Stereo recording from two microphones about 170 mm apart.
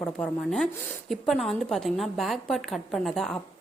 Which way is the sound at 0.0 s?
5° left (ahead or behind).